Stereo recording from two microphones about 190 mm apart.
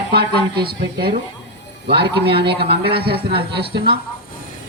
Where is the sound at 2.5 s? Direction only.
60° right (ahead or behind).